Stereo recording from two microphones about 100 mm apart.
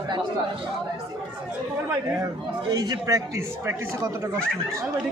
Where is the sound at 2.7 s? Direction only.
40° right (ahead or behind).